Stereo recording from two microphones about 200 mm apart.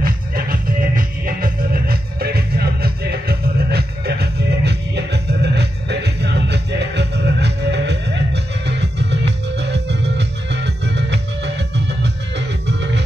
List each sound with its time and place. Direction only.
0.0 s music: 45° right (ahead or behind)